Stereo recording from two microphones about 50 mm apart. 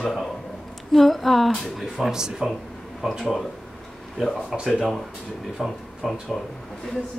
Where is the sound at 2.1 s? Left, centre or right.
Centre.